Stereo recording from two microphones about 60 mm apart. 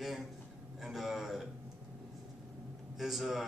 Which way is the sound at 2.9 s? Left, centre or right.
Centre.